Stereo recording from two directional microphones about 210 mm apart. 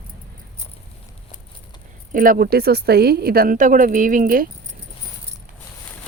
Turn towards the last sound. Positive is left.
turn(degrees=-40)  # may be behind; listen again after turning